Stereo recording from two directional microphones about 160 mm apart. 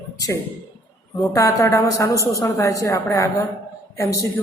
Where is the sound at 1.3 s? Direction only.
20° left (ahead or behind).